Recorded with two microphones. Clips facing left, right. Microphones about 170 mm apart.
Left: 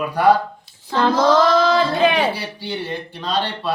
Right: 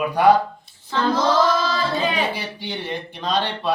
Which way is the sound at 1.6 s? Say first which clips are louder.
Left 6 dB; 65° left (ahead or behind).